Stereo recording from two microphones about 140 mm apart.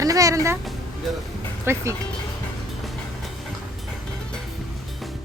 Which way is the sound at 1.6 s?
20° right (ahead or behind).